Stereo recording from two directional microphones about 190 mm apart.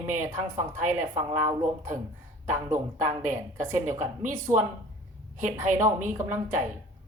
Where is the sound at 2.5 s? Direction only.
15° right (ahead or behind).